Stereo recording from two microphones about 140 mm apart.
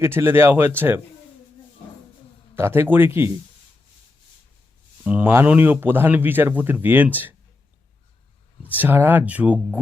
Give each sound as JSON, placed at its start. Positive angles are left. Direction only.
{"t": 0.0, "sound": "speech", "side_deg": -15}
{"t": 2.6, "sound": "speech", "side_deg": -15}
{"t": 5.0, "sound": "speech", "side_deg": -10}
{"t": 8.7, "sound": "speech", "side_deg": -15}